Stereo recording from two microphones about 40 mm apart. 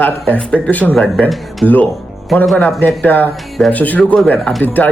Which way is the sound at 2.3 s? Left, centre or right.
Centre.